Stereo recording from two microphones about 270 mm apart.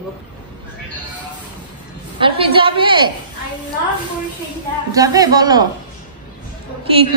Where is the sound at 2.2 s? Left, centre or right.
Centre.